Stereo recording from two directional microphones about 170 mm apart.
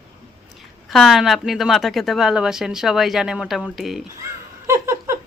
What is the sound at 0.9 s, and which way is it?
Speech, centre (ahead or behind).